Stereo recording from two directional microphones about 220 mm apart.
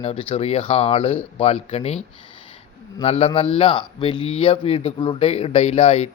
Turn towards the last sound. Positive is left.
turn(degrees=25)  # may be behind; listen again after turning